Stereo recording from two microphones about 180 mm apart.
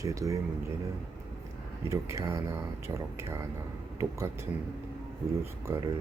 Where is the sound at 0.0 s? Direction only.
15° right (ahead or behind).